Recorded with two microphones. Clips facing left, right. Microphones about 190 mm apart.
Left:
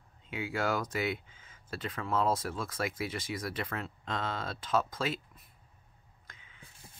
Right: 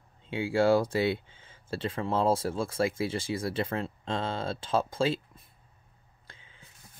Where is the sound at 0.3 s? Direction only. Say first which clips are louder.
Right 9 dB; 30° right (ahead or behind).